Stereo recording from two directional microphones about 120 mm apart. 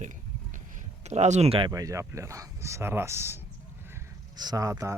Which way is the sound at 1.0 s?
70° right (ahead or behind).